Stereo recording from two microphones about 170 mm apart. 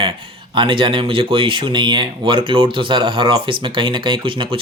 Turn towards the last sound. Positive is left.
turn(degrees=-30)  # may be behind; listen again after turning